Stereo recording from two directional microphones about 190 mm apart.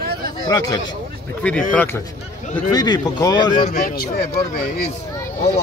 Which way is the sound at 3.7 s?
45° left (ahead or behind).